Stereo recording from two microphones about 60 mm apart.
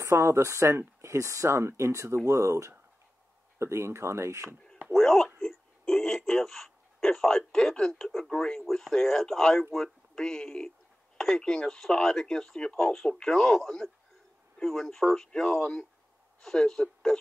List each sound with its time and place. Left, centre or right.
0.0 s speech: right
1.6 s speech: right
4.9 s speech: centre
8.3 s speech: centre
8.5 s a man's voice: centre